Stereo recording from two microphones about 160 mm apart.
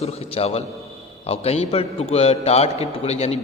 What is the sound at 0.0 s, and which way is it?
A man's voice, 40° left (ahead or behind).